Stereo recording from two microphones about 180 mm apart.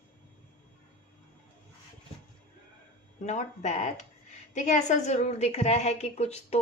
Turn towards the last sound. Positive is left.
turn(degrees=35)  # may be behind; listen again after turning